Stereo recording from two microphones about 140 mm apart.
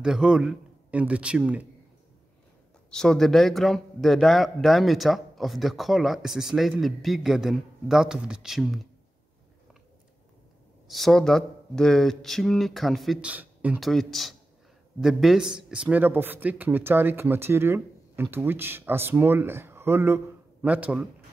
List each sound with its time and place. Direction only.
0.0 s speech: 5° right (ahead or behind)
2.9 s a man's voice: 5° left (ahead or behind)
10.9 s a man's voice: centre (ahead or behind)
13.8 s a man's voice: centre (ahead or behind)